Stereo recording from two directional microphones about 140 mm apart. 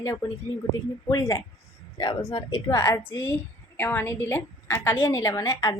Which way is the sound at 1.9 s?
30° left (ahead or behind).